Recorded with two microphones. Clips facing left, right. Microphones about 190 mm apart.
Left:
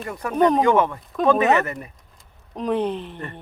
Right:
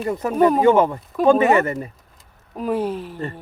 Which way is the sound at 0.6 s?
30° right (ahead or behind).